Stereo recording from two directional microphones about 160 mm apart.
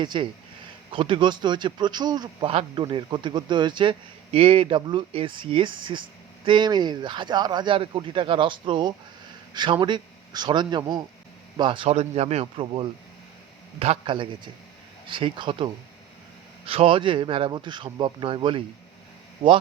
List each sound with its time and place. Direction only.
0.0 s a man's voice: 30° right (ahead or behind)